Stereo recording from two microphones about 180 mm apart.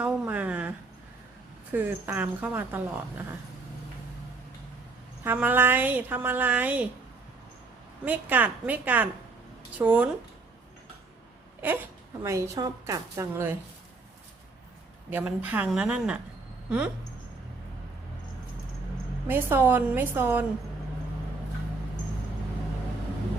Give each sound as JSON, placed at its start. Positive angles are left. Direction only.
{"t": 0.0, "sound": "a sound", "side_deg": -10}
{"t": 1.7, "sound": "speech", "side_deg": -10}
{"t": 5.2, "sound": "speech", "side_deg": -10}
{"t": 8.0, "sound": "speech", "side_deg": -10}
{"t": 12.2, "sound": "speech", "side_deg": -20}
{"t": 15.1, "sound": "speech", "side_deg": -10}
{"t": 19.3, "sound": "speech", "side_deg": -10}